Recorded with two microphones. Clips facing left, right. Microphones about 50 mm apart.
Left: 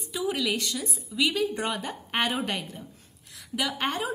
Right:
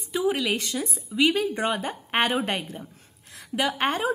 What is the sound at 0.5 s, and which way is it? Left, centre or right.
A woman's voice, right.